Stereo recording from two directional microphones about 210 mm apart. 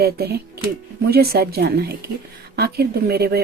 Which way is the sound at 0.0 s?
50° right (ahead or behind).